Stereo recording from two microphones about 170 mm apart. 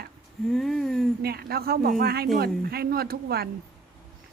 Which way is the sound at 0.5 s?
Centre (ahead or behind).